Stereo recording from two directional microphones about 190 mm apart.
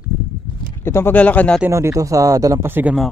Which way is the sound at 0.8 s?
10° left (ahead or behind).